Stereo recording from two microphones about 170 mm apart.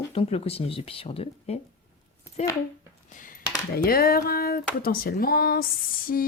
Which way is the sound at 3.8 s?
60° left (ahead or behind).